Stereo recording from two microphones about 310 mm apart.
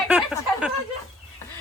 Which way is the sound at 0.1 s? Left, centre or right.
Centre.